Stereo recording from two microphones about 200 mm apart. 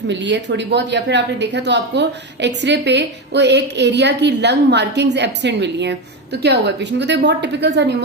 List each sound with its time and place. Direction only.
0.1 s speech: 60° right (ahead or behind)